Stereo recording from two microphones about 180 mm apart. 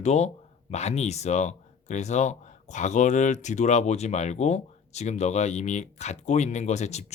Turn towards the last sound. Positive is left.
turn(degrees=40)  # may be behind; listen again after turning